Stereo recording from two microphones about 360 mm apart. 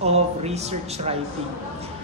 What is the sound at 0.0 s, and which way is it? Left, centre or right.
A woman's voice, centre.